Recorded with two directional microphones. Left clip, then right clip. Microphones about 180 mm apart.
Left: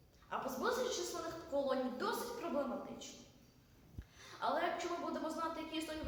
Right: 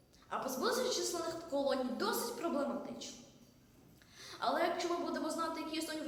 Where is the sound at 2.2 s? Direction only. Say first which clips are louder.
Right 4 dB; 15° right (ahead or behind).